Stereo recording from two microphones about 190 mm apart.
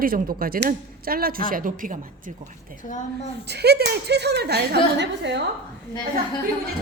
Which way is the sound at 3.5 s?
60° right (ahead or behind).